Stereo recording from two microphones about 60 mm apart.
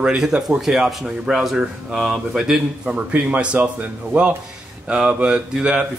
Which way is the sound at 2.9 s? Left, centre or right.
Right.